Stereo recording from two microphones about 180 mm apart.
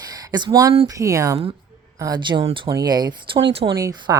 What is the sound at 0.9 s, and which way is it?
Speech, 20° right (ahead or behind).